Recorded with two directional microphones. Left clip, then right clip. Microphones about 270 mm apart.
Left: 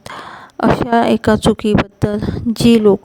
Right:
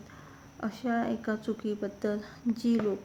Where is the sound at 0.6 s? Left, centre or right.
Left.